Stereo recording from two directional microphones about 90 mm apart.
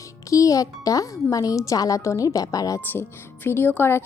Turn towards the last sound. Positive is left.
turn(degrees=25)  # may be behind; listen again after turning